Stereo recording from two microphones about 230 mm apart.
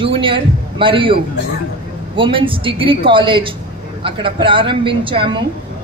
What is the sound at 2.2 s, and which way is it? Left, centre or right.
A man's voice, right.